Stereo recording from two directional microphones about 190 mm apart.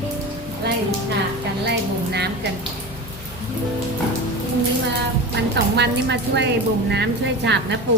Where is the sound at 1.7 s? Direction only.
60° right (ahead or behind).